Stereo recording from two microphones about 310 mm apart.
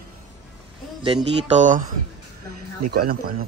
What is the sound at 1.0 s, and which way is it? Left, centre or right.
Speech, right.